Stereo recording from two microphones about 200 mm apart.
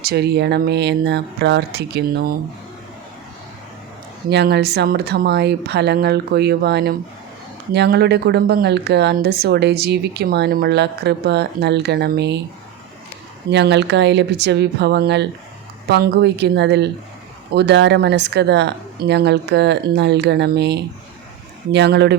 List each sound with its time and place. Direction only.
0.0 s a woman's voice: 55° right (ahead or behind)
4.3 s a woman's voice: 55° right (ahead or behind)
13.5 s a woman's voice: 60° right (ahead or behind)